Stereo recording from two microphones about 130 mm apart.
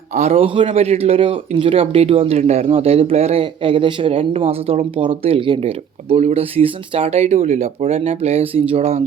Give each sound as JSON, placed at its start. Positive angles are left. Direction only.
{"t": 0.1, "sound": "speech", "side_deg": -55}